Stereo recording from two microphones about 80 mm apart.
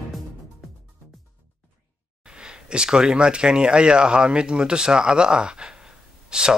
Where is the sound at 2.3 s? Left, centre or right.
Centre.